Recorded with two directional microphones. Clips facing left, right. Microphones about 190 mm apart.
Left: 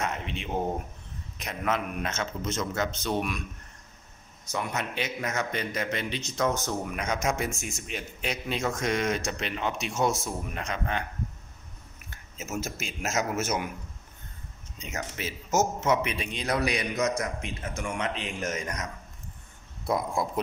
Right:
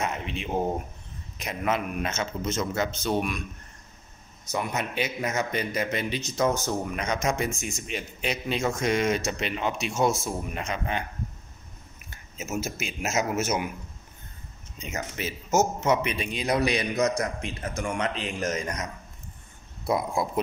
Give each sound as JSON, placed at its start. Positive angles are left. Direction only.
{"t": 0.0, "sound": "a sound", "side_deg": -5}
{"t": 1.4, "sound": "a man's voice", "side_deg": -5}
{"t": 4.5, "sound": "a man's voice", "side_deg": -10}
{"t": 6.6, "sound": "a man's voice", "side_deg": 5}
{"t": 12.4, "sound": "a man's voice", "side_deg": -10}
{"t": 14.8, "sound": "a man's voice", "side_deg": 0}
{"t": 16.6, "sound": "a man's voice", "side_deg": -30}